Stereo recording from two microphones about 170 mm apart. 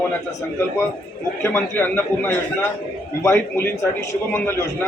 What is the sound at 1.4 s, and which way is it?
A man's voice, 10° left (ahead or behind).